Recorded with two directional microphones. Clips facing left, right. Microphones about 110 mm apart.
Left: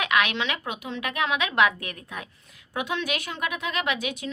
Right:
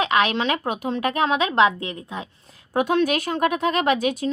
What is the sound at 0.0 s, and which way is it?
Speech, 35° right (ahead or behind).